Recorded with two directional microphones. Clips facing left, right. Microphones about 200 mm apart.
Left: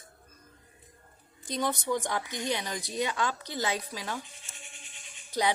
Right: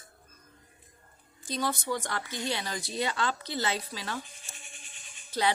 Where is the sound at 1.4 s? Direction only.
20° left (ahead or behind).